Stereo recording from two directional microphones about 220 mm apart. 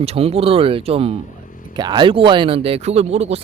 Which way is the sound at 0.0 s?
25° right (ahead or behind).